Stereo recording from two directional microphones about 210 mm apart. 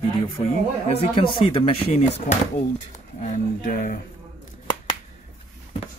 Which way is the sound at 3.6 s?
35° left (ahead or behind).